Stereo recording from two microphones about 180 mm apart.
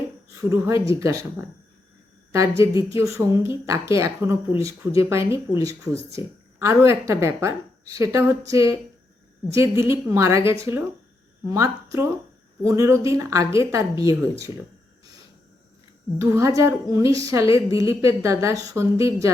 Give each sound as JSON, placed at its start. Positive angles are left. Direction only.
{"t": 0.3, "sound": "a woman's voice", "side_deg": -15}
{"t": 2.3, "sound": "a woman's voice", "side_deg": -15}
{"t": 16.1, "sound": "a woman's voice", "side_deg": -15}